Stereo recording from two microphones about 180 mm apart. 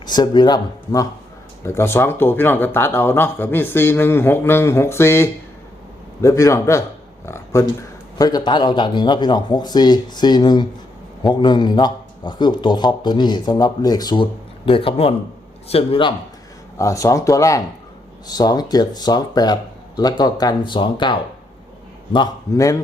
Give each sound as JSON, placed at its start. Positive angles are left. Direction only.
{"t": 0.0, "sound": "a man's voice", "side_deg": 25}
{"t": 16.7, "sound": "a man's voice", "side_deg": 15}